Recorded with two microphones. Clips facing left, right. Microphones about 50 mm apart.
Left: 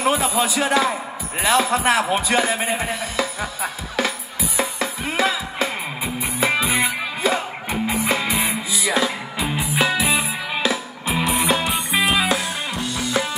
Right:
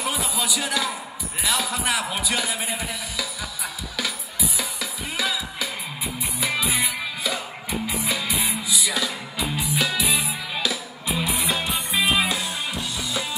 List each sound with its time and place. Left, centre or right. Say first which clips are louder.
0.0 s a man's voice: left 7 dB; left
4.6 s music: left 7 dB; left
11.1 s music: left 5 dB; left
12.9 s music: left 6 dB; left